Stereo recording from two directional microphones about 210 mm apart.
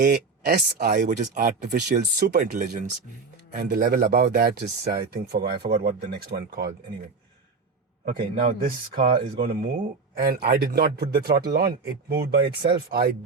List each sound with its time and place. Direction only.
0.0 s speech: 45° right (ahead or behind)
8.0 s a man's voice: 40° right (ahead or behind)